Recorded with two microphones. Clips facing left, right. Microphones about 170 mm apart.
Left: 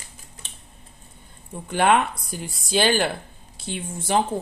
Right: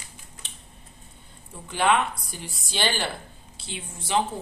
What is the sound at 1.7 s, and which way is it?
A woman's voice, 50° left (ahead or behind).